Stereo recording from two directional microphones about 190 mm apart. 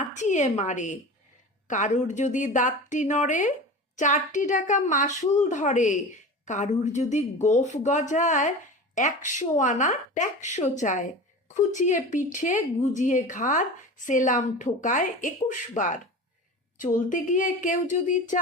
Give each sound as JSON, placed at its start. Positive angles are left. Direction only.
{"t": 0.0, "sound": "a woman's voice", "side_deg": 40}